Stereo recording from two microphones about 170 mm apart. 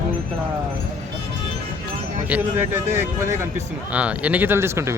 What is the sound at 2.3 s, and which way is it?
Speech, 15° right (ahead or behind).